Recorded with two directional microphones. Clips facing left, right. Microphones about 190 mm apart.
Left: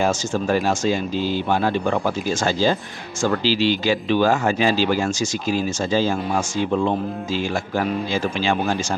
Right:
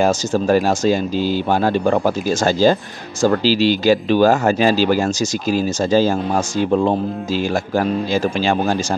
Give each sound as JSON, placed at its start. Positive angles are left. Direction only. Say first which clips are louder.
{"t": 0.0, "sound": "speech", "louder": "right 4 dB", "side_deg": -40}